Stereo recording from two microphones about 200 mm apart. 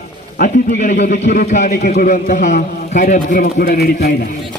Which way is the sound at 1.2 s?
40° left (ahead or behind).